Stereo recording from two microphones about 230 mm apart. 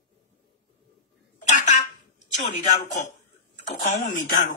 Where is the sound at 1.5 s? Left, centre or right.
Left.